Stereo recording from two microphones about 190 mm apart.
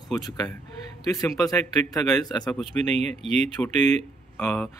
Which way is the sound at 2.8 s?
35° right (ahead or behind).